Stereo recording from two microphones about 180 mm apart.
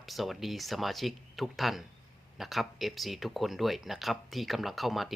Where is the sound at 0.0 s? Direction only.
Centre (ahead or behind).